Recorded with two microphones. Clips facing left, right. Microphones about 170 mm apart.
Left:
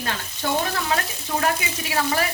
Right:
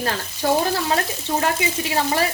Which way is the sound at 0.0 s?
35° right (ahead or behind).